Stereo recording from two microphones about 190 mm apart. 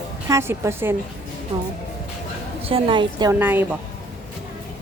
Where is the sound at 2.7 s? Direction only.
30° right (ahead or behind).